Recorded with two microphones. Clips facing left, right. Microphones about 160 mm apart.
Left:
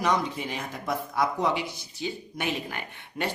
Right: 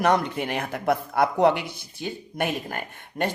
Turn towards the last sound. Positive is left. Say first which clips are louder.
# right 4 dB
turn(degrees=-50)  # may be behind; listen again after turning